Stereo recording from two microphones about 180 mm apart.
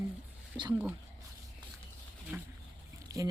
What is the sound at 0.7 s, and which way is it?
Speech, 10° right (ahead or behind).